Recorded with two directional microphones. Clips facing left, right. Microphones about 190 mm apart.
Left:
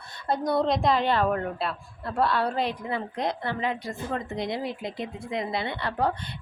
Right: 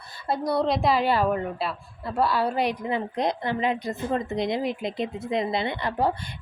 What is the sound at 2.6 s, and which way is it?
A woman's voice, 15° right (ahead or behind).